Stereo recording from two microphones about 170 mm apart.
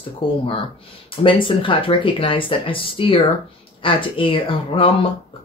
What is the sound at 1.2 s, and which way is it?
Speech, 30° left (ahead or behind).